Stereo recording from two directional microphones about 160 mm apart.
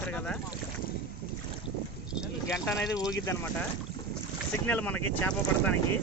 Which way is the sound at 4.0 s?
25° left (ahead or behind).